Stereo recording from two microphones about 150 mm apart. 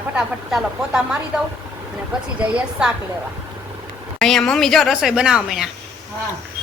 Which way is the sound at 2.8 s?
5° right (ahead or behind).